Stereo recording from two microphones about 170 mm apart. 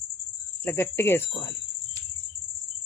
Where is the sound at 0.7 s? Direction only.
15° left (ahead or behind).